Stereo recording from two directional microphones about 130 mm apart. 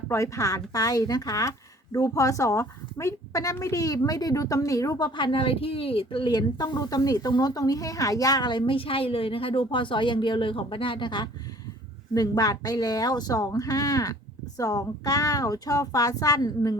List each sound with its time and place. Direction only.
0.1 s a woman's voice: 25° left (ahead or behind)